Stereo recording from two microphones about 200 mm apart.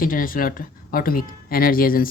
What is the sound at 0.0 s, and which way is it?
Speech, 45° left (ahead or behind).